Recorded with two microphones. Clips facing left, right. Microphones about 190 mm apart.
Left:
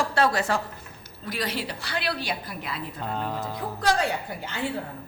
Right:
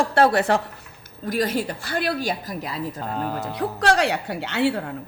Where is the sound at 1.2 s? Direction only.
45° right (ahead or behind).